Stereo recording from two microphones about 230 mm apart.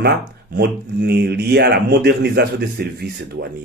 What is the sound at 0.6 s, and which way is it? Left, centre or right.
Speech, right.